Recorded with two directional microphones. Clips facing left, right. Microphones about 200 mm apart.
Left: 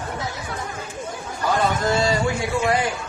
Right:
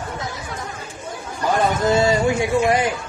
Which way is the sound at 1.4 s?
20° right (ahead or behind).